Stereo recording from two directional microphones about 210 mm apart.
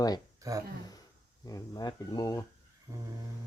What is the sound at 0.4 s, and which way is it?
Speech, 15° right (ahead or behind).